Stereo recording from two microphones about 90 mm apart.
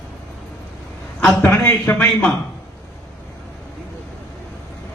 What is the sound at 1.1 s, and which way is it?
Speech, 15° left (ahead or behind).